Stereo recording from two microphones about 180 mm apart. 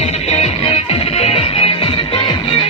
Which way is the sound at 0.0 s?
35° left (ahead or behind).